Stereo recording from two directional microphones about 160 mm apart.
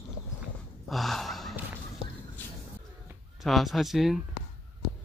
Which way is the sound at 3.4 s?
Centre (ahead or behind).